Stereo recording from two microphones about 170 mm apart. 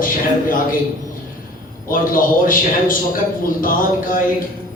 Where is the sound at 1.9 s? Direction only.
55° left (ahead or behind).